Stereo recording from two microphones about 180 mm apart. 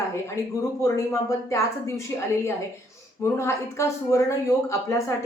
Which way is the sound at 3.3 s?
15° left (ahead or behind).